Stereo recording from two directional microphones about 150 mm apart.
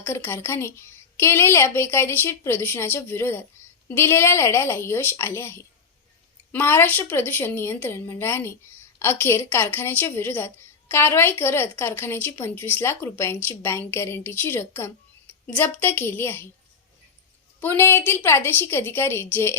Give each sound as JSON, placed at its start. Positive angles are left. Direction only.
{"t": 0.0, "sound": "a woman's voice", "side_deg": 15}
{"t": 17.6, "sound": "a woman's voice", "side_deg": 15}